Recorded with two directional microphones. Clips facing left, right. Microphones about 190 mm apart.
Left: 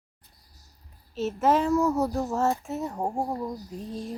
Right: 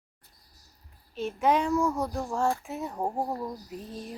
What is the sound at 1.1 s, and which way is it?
A woman's voice, 5° left (ahead or behind).